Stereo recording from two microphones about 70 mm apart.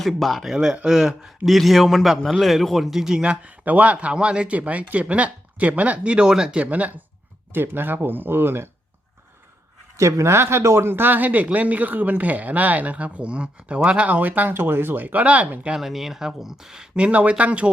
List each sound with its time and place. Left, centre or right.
0.0 s a man's voice: centre; by 8.7 s right
10.0 s speech: right
15.7 s a man's voice: centre